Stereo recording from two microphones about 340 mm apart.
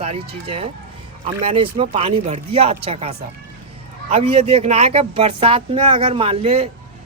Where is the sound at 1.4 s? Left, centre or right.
Centre.